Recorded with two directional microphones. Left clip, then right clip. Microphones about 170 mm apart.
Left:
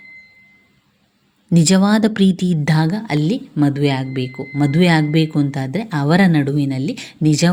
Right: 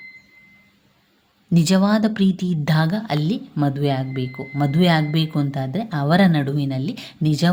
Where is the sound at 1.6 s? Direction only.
20° left (ahead or behind).